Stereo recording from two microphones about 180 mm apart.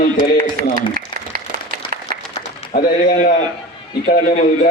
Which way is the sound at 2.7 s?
50° left (ahead or behind).